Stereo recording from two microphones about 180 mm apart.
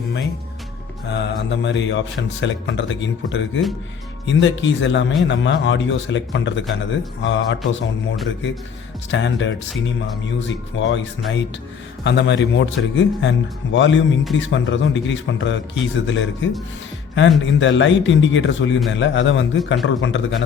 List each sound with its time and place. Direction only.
1.0 s a man's voice: 75° left (ahead or behind); by 11.0 s 90° left
12.0 s a man's voice: 80° left